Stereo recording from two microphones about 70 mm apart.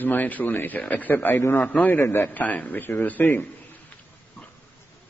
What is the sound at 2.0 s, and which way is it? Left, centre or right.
Speech, left.